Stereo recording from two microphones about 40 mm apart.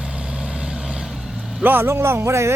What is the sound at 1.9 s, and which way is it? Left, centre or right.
Speech, right.